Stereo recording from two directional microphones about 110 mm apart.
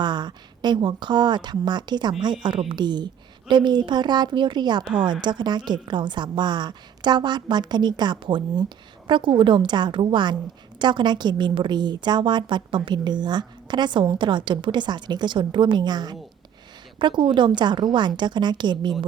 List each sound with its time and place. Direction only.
0.0 s a woman's voice: 40° right (ahead or behind)